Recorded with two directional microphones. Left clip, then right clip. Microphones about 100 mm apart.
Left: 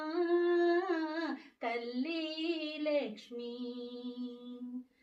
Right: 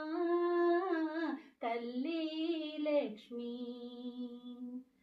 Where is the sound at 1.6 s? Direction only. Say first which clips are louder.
Left 2 dB; 40° right (ahead or behind).